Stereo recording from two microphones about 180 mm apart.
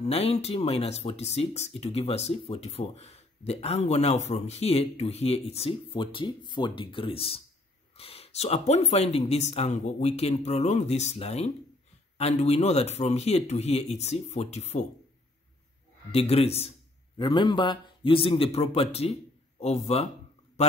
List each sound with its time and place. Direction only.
0.1 s speech: 35° left (ahead or behind)
16.1 s speech: 35° left (ahead or behind)